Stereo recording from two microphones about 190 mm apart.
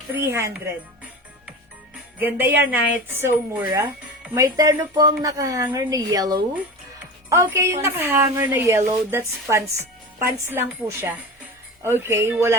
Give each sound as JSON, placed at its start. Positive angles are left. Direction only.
{"t": 0.2, "sound": "a woman's voice", "side_deg": -15}
{"t": 2.1, "sound": "a woman's voice", "side_deg": -10}